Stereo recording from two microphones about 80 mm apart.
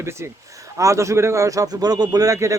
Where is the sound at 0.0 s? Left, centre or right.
Right.